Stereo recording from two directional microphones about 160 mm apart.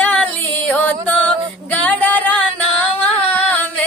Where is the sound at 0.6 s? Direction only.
10° left (ahead or behind).